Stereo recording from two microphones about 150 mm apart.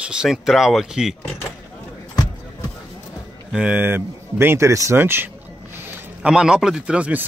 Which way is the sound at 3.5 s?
10° right (ahead or behind).